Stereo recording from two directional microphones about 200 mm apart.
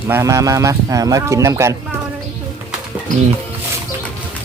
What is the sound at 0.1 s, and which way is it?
Speech, 15° right (ahead or behind).